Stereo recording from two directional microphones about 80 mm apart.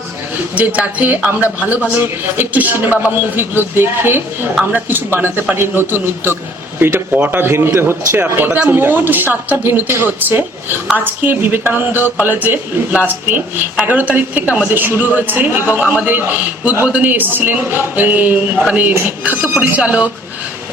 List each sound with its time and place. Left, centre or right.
0.5 s a man's voice: centre
8.4 s speech: centre
8.7 s a man's voice: right